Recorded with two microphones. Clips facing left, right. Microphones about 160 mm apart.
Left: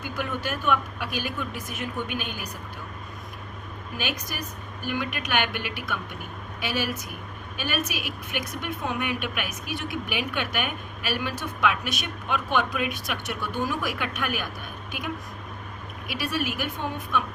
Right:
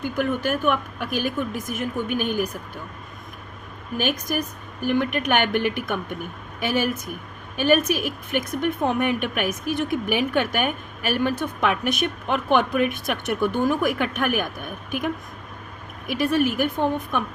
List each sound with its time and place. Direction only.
0.0 s a woman's voice: 50° right (ahead or behind)
3.9 s a woman's voice: 50° right (ahead or behind)